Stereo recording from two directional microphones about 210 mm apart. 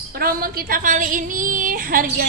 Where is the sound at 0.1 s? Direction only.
45° right (ahead or behind).